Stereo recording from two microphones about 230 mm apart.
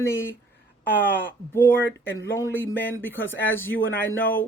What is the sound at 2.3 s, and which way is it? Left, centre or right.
Speech, centre.